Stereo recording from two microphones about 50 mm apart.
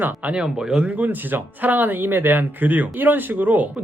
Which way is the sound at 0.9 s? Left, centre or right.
Right.